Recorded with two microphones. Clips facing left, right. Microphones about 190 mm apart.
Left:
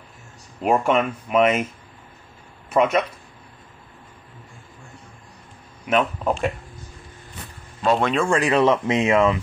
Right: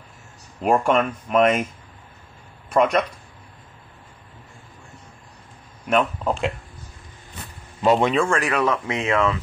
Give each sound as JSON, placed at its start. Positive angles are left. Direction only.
{"t": 0.6, "sound": "speech", "side_deg": 5}
{"t": 2.7, "sound": "speech", "side_deg": 5}
{"t": 5.9, "sound": "speech", "side_deg": 5}
{"t": 7.8, "sound": "a man's voice", "side_deg": -15}
{"t": 8.3, "sound": "speech", "side_deg": 20}